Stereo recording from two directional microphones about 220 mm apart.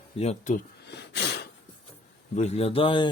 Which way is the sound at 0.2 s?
35° left (ahead or behind).